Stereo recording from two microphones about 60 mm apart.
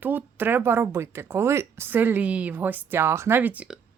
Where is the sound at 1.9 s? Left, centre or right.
Right.